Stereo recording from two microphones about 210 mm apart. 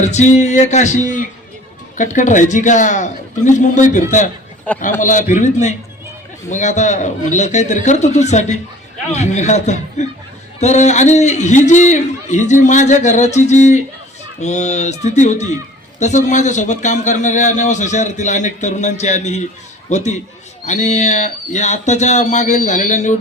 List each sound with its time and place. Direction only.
0.0 s a man's voice: 35° left (ahead or behind)